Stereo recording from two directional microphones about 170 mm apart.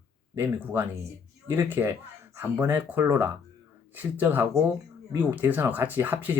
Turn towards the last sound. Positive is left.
turn(degrees=-10)  # may be behind; listen again after turning